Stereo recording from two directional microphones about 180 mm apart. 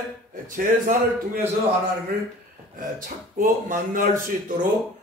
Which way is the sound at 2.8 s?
50° right (ahead or behind).